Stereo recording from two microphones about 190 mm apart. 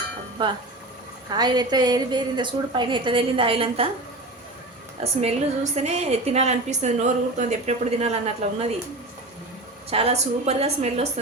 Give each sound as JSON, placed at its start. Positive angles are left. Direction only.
{"t": 0.4, "sound": "a woman's voice", "side_deg": -25}
{"t": 5.0, "sound": "a woman's voice", "side_deg": -30}
{"t": 9.9, "sound": "a woman's voice", "side_deg": -30}